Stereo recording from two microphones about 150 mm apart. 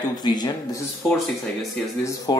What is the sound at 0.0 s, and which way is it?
Speech, 25° left (ahead or behind).